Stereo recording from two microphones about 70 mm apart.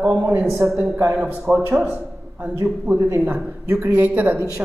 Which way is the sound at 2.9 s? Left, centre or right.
Right.